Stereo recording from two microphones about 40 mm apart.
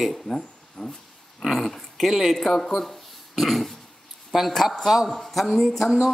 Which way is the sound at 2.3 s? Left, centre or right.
Centre.